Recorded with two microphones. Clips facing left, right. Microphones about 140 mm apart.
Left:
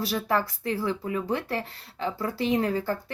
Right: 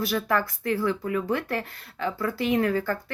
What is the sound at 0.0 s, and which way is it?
Speech, 35° left (ahead or behind).